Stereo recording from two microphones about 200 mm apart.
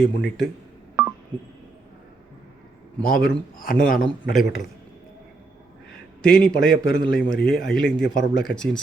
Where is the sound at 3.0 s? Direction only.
Centre (ahead or behind).